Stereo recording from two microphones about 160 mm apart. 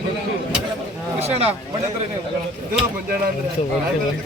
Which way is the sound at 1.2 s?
40° right (ahead or behind).